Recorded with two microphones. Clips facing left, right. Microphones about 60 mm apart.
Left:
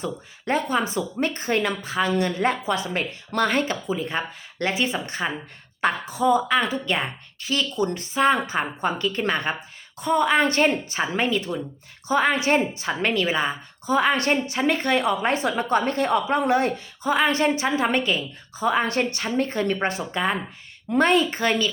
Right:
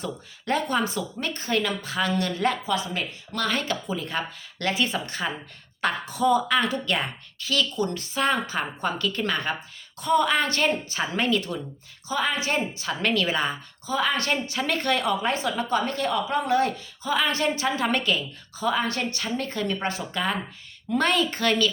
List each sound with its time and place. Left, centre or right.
0.0 s speech: centre
1.8 s speech: centre
2.6 s speech: left
3.8 s speech: centre
12.0 s speech: left; by 13.6 s centre
13.8 s speech: left
14.5 s speech: left
15.2 s speech: left